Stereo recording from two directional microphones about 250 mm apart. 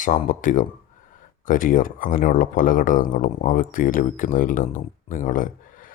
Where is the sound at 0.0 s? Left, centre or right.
Left.